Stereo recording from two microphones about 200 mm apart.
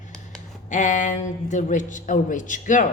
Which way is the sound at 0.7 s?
40° left (ahead or behind).